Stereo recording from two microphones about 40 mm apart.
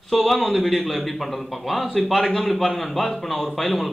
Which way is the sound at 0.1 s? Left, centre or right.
Centre.